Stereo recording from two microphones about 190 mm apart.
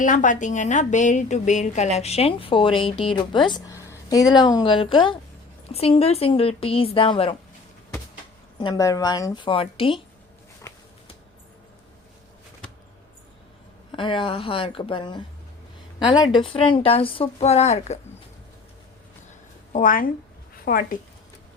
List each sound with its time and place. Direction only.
0.0 s a woman's voice: 40° left (ahead or behind); by 7.3 s 25° left (ahead or behind)
8.5 s a woman's voice: 20° left (ahead or behind)
13.9 s a woman's voice: 25° left (ahead or behind)
19.7 s a woman's voice: 45° left (ahead or behind)